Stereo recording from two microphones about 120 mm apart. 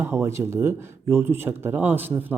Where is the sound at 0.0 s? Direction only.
25° right (ahead or behind).